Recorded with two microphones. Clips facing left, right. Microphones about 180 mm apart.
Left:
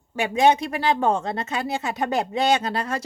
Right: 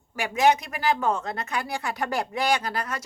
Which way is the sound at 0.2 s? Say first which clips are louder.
Left 3 dB; 25° left (ahead or behind).